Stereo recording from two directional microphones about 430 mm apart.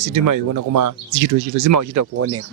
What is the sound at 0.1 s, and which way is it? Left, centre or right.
Speech, right.